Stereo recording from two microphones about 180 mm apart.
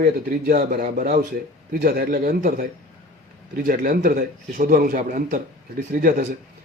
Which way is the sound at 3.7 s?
50° right (ahead or behind).